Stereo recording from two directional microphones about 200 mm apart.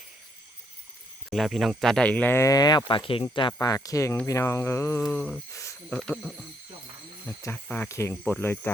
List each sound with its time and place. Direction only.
1.3 s speech: centre (ahead or behind)
5.1 s a sound: 10° left (ahead or behind)
5.9 s speech: centre (ahead or behind)
7.4 s speech: 10° left (ahead or behind)